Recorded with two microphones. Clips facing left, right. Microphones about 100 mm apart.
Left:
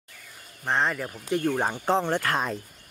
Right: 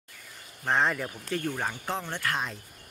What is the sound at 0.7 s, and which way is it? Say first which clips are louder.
Speech: even; centre (ahead or behind).